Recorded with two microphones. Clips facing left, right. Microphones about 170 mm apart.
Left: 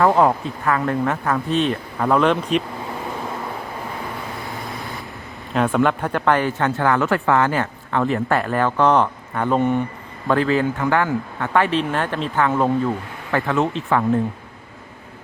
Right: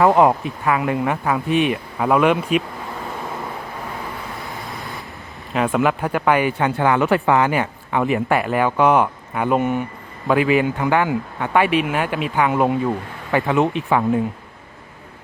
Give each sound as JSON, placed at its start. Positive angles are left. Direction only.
{"t": 0.0, "sound": "speech", "side_deg": -15}
{"t": 4.4, "sound": "vehicle", "side_deg": 0}
{"t": 5.5, "sound": "speech", "side_deg": -5}